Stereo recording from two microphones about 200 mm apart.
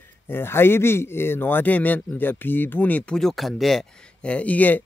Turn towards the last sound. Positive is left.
turn(degrees=10)  # may be behind; listen again after turning